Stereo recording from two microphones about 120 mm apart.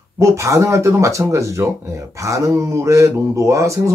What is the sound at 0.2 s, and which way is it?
Speech, 25° right (ahead or behind).